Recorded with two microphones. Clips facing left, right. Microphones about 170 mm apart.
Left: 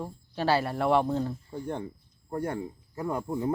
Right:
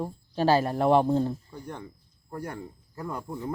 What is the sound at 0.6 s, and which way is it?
Speech, 25° right (ahead or behind).